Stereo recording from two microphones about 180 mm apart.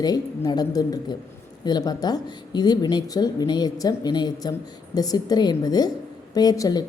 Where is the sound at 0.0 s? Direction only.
20° left (ahead or behind).